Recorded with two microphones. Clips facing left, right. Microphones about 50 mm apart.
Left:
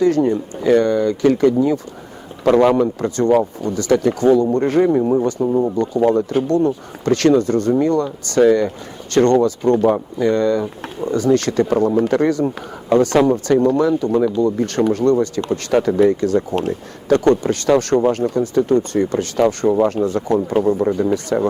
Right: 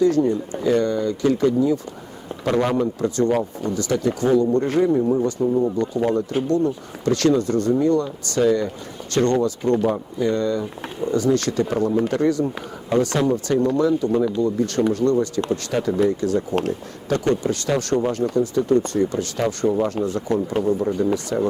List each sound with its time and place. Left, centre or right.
0.0 s speech: left
3.0 s speech: left